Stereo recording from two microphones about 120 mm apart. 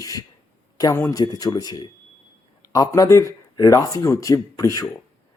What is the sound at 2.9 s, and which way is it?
A man's voice, 25° left (ahead or behind).